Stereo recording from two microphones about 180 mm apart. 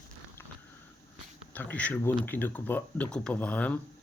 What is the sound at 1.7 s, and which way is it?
Speech, 10° left (ahead or behind).